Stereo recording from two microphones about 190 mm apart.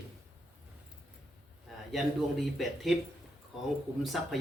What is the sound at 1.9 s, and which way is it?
Speech, centre (ahead or behind).